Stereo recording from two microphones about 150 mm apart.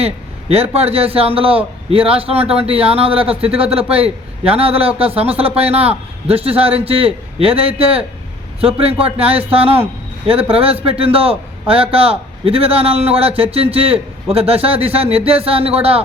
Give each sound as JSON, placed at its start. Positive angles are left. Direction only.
{"t": 0.0, "sound": "a man's voice", "side_deg": -45}